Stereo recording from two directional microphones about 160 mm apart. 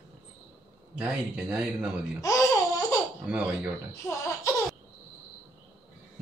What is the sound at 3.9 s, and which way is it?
Speech, 20° left (ahead or behind).